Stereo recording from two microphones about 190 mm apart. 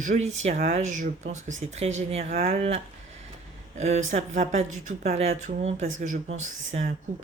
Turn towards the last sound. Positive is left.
turn(degrees=-35)  # may be behind; listen again after turning